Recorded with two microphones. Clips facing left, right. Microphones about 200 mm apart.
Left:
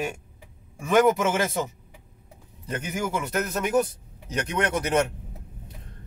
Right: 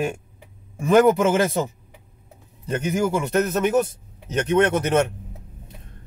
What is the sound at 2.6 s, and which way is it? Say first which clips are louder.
Speech: right 7 dB; 30° right (ahead or behind).